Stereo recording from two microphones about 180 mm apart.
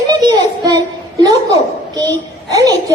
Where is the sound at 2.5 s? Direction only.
20° right (ahead or behind).